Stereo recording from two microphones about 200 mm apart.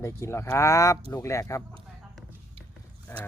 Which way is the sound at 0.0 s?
15° left (ahead or behind).